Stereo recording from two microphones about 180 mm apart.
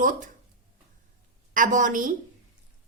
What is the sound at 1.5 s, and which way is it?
Speech, 45° right (ahead or behind).